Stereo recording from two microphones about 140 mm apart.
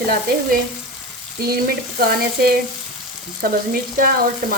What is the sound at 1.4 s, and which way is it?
Frying, 90° right.